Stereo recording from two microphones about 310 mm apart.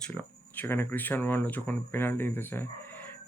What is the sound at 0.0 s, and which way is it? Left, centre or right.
Speech, centre.